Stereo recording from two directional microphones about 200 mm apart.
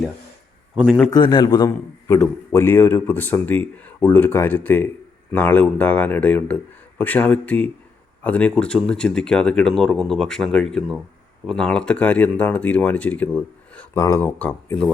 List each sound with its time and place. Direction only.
0.8 s speech: 5° right (ahead or behind)
1.1 s a man's voice: 20° left (ahead or behind)